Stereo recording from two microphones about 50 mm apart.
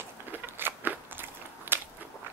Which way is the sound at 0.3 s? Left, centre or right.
Right.